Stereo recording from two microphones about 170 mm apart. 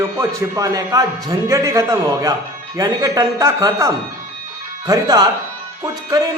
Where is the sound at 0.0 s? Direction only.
15° right (ahead or behind).